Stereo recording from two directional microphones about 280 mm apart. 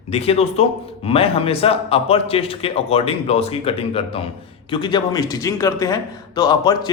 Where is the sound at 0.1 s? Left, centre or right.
Left.